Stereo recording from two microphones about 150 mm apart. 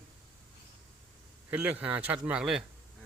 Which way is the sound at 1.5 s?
10° right (ahead or behind).